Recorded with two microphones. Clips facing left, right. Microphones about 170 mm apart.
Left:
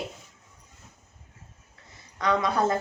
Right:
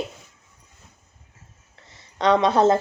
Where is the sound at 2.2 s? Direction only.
90° right.